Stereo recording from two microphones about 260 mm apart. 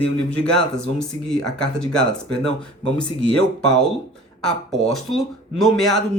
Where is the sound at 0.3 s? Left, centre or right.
Centre.